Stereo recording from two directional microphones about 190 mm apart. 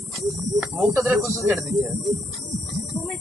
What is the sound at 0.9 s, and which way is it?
Speech, 15° right (ahead or behind).